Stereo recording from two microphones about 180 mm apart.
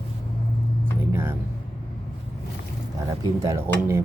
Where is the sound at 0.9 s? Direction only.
10° right (ahead or behind).